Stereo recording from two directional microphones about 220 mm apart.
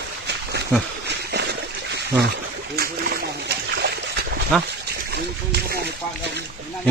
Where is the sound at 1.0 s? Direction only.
50° right (ahead or behind).